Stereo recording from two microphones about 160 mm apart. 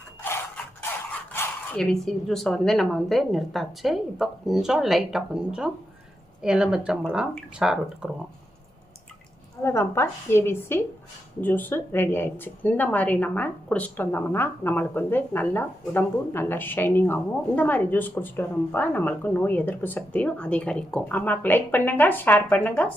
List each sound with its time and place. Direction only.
0.2 s speech: 15° left (ahead or behind); by 8.1 s 5° right (ahead or behind)
9.6 s speech: 15° left (ahead or behind)